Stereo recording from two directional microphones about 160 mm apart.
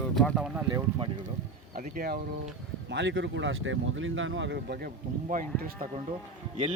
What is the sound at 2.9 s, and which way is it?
Speech, 90° right.